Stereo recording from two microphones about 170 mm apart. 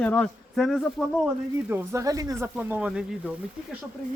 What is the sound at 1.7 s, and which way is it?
Speech, 15° right (ahead or behind).